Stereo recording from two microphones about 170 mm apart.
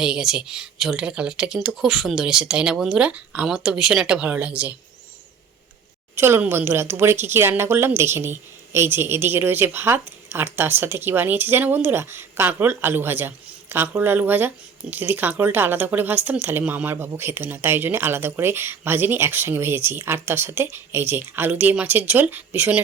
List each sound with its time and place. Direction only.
0.0 s speech: 5° right (ahead or behind)
6.1 s speech: 15° right (ahead or behind)